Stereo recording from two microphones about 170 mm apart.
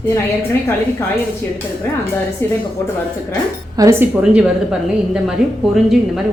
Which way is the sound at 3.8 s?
15° right (ahead or behind).